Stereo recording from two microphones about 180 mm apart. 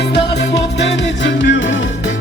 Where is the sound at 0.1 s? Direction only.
70° left (ahead or behind); by 1.7 s 90° left.